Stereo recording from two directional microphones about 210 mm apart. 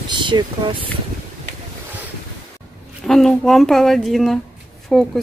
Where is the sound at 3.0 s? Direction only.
Centre (ahead or behind).